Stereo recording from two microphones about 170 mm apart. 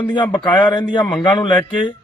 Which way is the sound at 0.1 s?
25° left (ahead or behind).